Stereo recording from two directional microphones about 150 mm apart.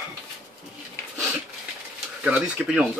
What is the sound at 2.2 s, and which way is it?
Speech, 5° right (ahead or behind).